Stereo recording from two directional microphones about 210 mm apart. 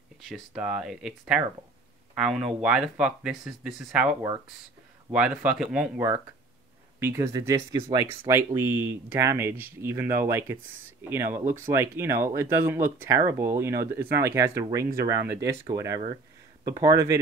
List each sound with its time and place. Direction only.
0.2 s speech: centre (ahead or behind); by 8.3 s 20° right (ahead or behind)
8.5 s speech: 10° right (ahead or behind)